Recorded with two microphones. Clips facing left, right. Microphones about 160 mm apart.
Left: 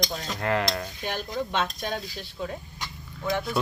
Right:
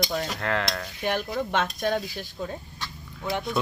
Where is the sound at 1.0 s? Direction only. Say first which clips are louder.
Right 5 dB; 60° right (ahead or behind).